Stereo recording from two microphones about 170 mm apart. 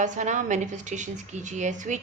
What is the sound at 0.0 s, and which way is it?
A woman's voice, 45° right (ahead or behind).